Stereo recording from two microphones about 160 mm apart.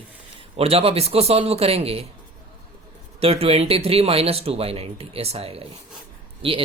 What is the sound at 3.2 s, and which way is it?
Speech, 40° right (ahead or behind).